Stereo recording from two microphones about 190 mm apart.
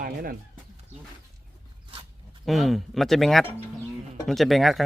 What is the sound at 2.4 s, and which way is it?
A man's voice, centre (ahead or behind).